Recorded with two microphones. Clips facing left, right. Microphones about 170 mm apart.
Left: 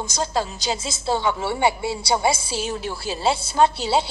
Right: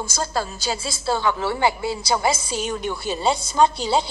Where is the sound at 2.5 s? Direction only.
10° left (ahead or behind).